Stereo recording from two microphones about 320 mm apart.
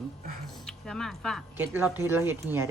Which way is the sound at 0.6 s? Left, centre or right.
Centre.